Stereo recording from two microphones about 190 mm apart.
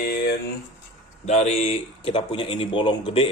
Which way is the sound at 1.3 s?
35° left (ahead or behind).